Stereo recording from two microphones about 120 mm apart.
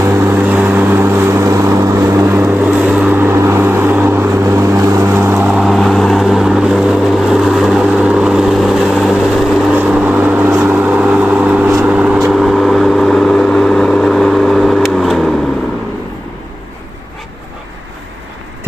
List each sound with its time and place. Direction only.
0.4 s vehicle: 15° right (ahead or behind)
5.5 s vehicle: centre (ahead or behind)
9.7 s vehicle: 15° right (ahead or behind)